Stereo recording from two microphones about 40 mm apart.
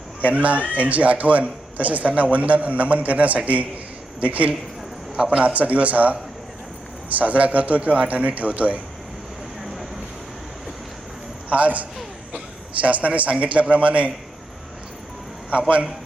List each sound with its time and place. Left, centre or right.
0.3 s a man's voice: right
5.1 s a man's voice: centre
5.4 s a man's voice: right
11.4 s a man's voice: right